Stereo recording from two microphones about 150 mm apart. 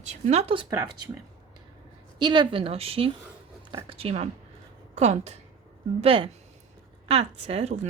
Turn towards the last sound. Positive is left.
turn(degrees=-50)  # may be behind; listen again after turning